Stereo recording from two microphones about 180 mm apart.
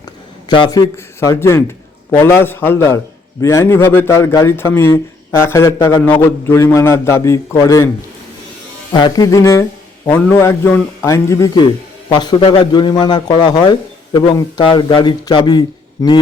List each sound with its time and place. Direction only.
0.4 s a man's voice: 25° left (ahead or behind)
8.9 s a man's voice: 25° left (ahead or behind)